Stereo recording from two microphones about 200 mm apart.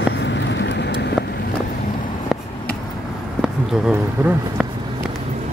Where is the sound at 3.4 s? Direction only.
5° right (ahead or behind).